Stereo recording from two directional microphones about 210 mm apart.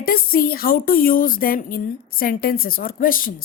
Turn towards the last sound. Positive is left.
turn(degrees=40)  # may be behind; listen again after turning